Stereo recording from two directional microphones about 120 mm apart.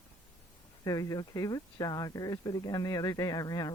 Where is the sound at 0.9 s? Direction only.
30° left (ahead or behind).